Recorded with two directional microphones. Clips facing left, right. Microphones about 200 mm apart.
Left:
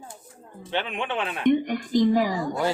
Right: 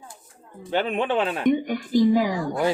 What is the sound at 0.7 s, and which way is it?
Speech, 40° right (ahead or behind).